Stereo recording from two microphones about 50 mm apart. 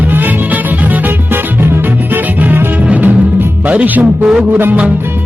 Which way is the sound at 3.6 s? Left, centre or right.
Right.